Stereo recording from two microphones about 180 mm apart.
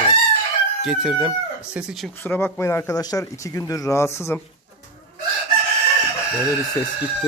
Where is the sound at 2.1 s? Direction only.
10° left (ahead or behind).